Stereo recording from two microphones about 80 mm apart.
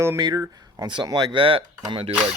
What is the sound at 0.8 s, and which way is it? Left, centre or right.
Speech, right.